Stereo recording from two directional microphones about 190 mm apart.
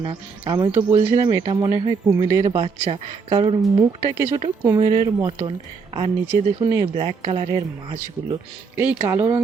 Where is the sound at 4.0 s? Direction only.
15° right (ahead or behind).